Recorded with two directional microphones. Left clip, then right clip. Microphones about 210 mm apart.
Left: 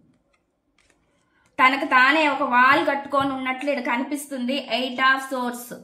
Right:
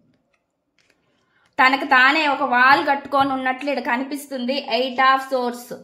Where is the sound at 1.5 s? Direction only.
55° right (ahead or behind).